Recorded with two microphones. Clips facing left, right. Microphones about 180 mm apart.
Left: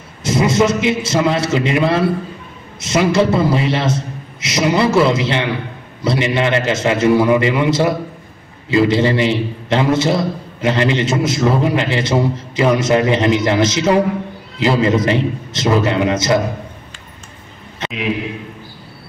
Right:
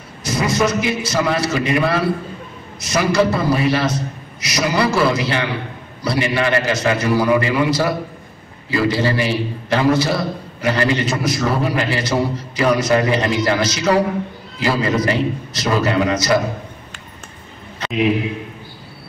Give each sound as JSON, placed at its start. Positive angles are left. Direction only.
{"t": 0.2, "sound": "a man's voice", "side_deg": 25}